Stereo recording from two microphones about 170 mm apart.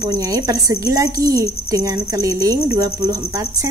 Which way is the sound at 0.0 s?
20° right (ahead or behind).